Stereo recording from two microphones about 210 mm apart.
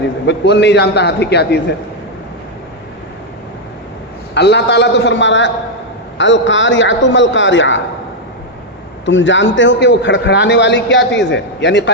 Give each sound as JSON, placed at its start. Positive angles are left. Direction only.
{"t": 0.3, "sound": "a man's voice", "side_deg": 55}
{"t": 4.4, "sound": "a man's voice", "side_deg": 55}
{"t": 9.0, "sound": "a man's voice", "side_deg": 60}